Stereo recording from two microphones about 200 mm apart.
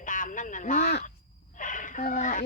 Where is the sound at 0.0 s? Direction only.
40° left (ahead or behind).